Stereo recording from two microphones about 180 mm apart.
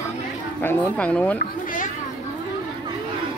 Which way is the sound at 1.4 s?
45° left (ahead or behind).